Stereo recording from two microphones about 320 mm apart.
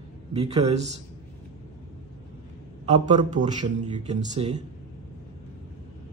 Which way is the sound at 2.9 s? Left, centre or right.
Right.